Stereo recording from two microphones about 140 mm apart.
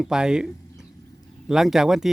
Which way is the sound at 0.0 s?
5° right (ahead or behind).